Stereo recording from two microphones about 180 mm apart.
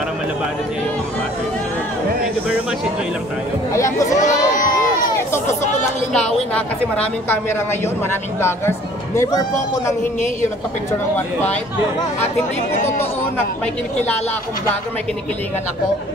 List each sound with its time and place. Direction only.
3.7 s a woman's voice: 15° left (ahead or behind)
4.1 s crowd: 45° left (ahead or behind)
5.0 s a sound: 15° left (ahead or behind)
5.5 s speech: 40° left (ahead or behind)
6.1 s a woman's voice: 5° left (ahead or behind)